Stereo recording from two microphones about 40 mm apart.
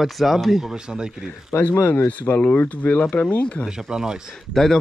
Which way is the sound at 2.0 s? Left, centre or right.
Left.